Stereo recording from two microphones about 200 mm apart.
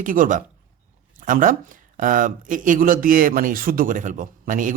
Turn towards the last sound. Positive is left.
turn(degrees=-40)  # may be behind; listen again after turning